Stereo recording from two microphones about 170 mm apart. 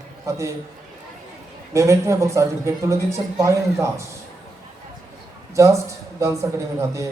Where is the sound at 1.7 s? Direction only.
15° right (ahead or behind).